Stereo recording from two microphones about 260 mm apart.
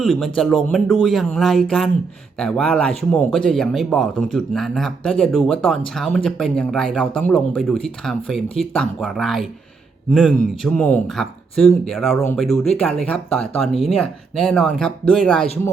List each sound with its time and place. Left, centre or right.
0.0 s speech: centre